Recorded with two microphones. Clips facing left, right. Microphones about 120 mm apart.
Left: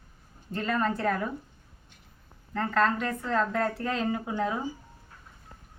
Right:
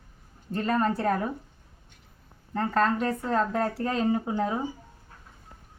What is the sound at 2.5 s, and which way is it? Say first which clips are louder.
Speech: right 2 dB; 20° right (ahead or behind).